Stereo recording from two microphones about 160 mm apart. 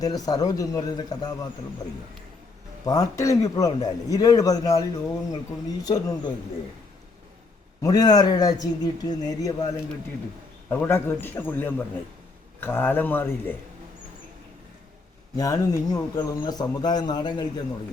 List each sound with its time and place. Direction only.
0.0 s a man's voice: 25° left (ahead or behind)
2.8 s a man's voice: 20° left (ahead or behind)
7.8 s a man's voice: 25° left (ahead or behind)
10.7 s a man's voice: 15° left (ahead or behind)
15.4 s a man's voice: 20° left (ahead or behind)